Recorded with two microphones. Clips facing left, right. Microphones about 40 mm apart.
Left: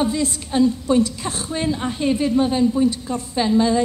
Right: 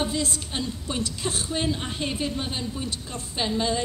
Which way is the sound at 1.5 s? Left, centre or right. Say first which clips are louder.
Left 8 dB; centre.